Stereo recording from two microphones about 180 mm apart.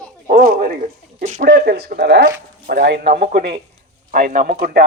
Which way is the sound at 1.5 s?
60° right (ahead or behind).